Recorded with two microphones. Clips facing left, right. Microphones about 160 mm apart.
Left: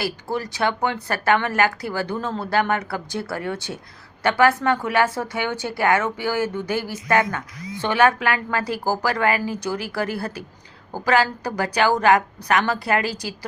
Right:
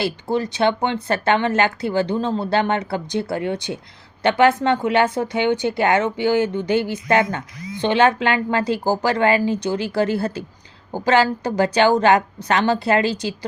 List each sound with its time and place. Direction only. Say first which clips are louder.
0.0 s speech: right 4 dB; 20° right (ahead or behind)